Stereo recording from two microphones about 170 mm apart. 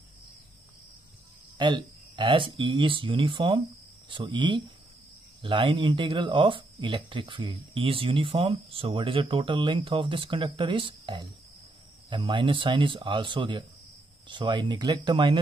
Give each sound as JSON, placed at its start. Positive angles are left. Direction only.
{"t": 1.6, "sound": "speech", "side_deg": -30}